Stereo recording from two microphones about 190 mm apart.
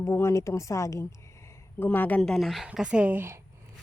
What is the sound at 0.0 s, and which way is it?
Speech, 15° left (ahead or behind).